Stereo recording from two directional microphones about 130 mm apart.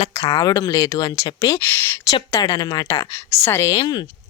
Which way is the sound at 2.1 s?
35° left (ahead or behind).